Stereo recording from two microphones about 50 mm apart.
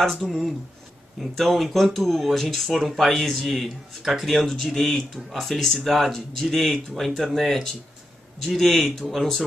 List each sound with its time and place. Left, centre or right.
0.0 s speech: centre